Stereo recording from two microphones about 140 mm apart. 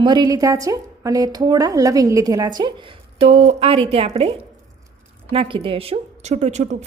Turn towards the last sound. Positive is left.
turn(degrees=-55)  # may be behind; listen again after turning